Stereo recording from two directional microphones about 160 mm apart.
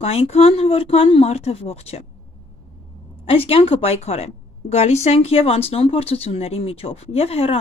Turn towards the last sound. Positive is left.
turn(degrees=40)  # may be behind; listen again after turning